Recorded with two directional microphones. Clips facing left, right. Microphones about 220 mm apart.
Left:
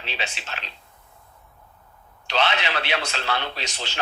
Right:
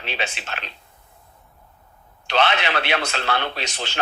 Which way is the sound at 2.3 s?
55° right (ahead or behind).